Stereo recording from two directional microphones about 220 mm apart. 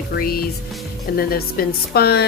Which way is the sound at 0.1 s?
45° left (ahead or behind).